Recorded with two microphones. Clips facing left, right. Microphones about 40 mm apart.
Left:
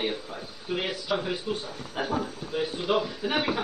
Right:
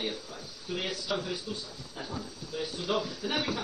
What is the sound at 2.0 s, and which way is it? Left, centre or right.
Speech, left.